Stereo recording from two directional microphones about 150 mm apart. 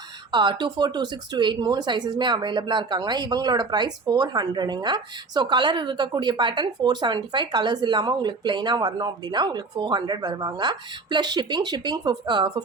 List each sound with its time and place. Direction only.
0.3 s speech: 30° right (ahead or behind)